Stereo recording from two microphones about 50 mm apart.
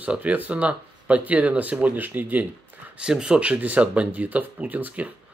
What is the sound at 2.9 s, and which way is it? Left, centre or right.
Speech, centre.